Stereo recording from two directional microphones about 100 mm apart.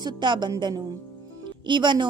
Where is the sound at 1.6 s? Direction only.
50° right (ahead or behind).